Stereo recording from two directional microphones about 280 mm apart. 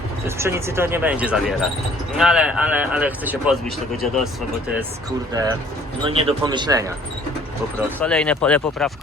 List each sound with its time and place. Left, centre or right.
0.3 s speech: centre
5.3 s speech: centre
7.9 s speech: centre